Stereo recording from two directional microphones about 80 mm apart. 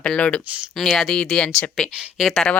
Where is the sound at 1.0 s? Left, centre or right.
Centre.